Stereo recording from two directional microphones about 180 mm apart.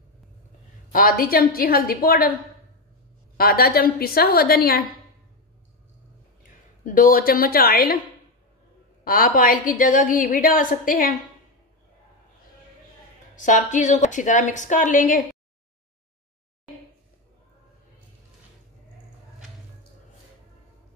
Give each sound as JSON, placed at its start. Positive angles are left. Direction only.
{"t": 0.9, "sound": "a woman's voice", "side_deg": 50}
{"t": 3.3, "sound": "a woman's voice", "side_deg": 55}
{"t": 6.8, "sound": "a woman's voice", "side_deg": 50}
{"t": 9.0, "sound": "a woman's voice", "side_deg": 50}
{"t": 13.4, "sound": "a woman's voice", "side_deg": 45}